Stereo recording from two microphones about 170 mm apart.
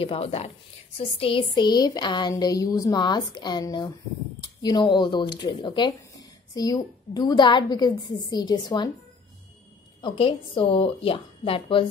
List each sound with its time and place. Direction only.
0.0 s a woman's voice: 35° left (ahead or behind)
0.9 s a sound: 35° left (ahead or behind)
10.0 s a woman's voice: 30° left (ahead or behind)